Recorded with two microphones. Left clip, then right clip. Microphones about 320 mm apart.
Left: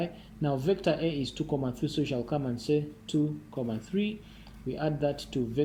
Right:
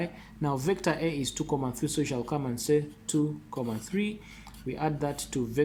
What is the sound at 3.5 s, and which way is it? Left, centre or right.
Speech, right.